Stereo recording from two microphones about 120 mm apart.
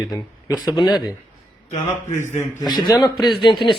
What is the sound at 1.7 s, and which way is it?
Speech, 75° left (ahead or behind).